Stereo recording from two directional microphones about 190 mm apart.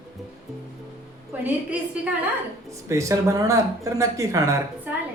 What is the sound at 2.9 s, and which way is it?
Speech, 15° right (ahead or behind).